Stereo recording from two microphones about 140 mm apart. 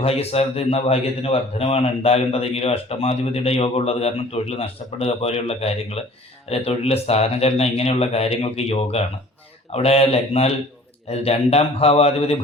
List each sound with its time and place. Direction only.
0.0 s a man's voice: 45° left (ahead or behind)